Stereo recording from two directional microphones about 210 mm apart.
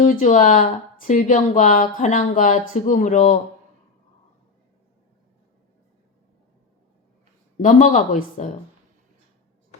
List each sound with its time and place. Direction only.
0.0 s speech: 35° left (ahead or behind)
7.6 s speech: 40° left (ahead or behind)